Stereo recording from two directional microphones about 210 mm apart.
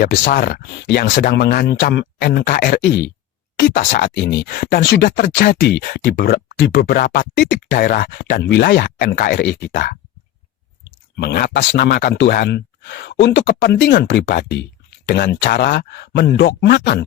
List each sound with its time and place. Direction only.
0.0 s speech: 40° left (ahead or behind)
4.1 s speech: 55° left (ahead or behind)
4.5 s speech: 40° left (ahead or behind)
4.8 s speech: 50° left (ahead or behind)
5.5 s speech: 60° left (ahead or behind)
5.9 s speech: 45° left (ahead or behind)
11.2 s speech: 50° left (ahead or behind)